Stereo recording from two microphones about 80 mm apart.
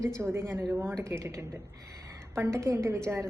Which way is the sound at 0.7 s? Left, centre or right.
Right.